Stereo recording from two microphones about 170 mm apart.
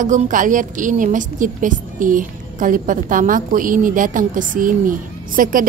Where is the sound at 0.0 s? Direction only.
50° right (ahead or behind).